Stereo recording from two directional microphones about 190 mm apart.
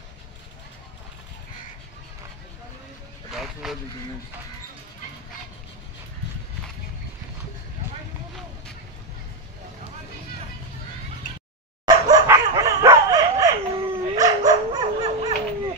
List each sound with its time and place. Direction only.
3.6 s speech: centre (ahead or behind)
11.8 s dog: 20° right (ahead or behind)